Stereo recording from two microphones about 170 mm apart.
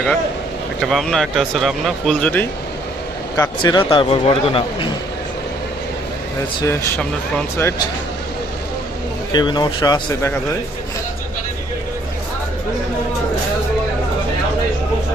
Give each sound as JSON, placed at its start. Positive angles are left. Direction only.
{"t": 0.8, "sound": "speech", "side_deg": 0}
{"t": 3.3, "sound": "speech", "side_deg": 20}
{"t": 6.6, "sound": "speech", "side_deg": 15}
{"t": 9.3, "sound": "speech", "side_deg": 25}